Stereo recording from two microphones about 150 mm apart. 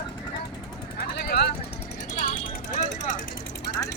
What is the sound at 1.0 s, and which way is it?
Vehicle, 90° left.